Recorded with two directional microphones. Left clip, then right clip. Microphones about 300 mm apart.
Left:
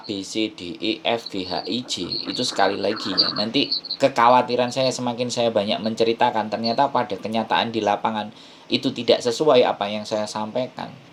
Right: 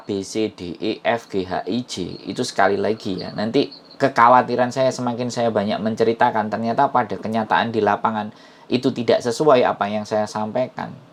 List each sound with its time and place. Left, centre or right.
0.1 s speech: centre